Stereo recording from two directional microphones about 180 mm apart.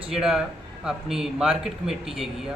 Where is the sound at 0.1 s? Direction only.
Centre (ahead or behind).